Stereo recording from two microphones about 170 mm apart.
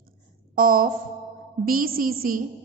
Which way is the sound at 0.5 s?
55° right (ahead or behind).